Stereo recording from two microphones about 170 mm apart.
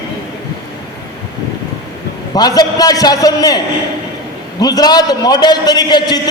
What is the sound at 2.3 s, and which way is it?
A man's voice, 25° left (ahead or behind).